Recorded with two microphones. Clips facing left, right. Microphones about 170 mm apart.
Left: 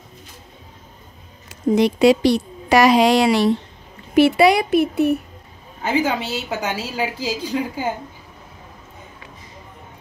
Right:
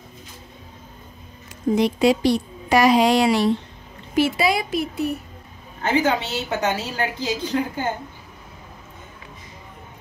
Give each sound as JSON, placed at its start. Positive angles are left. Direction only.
{"t": 1.8, "sound": "a woman's voice", "side_deg": 80}
{"t": 4.1, "sound": "speech", "side_deg": 65}
{"t": 5.8, "sound": "a woman's voice", "side_deg": 5}